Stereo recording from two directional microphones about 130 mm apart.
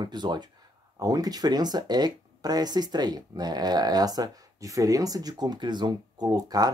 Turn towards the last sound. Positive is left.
turn(degrees=-30)  # may be behind; listen again after turning